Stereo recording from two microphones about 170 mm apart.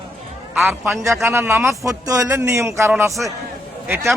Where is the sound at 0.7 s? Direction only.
5° right (ahead or behind).